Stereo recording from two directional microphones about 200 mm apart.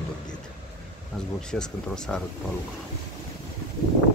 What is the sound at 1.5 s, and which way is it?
Speech, 5° left (ahead or behind).